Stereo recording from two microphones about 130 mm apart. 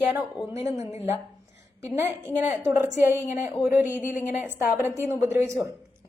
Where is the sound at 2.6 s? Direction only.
15° right (ahead or behind).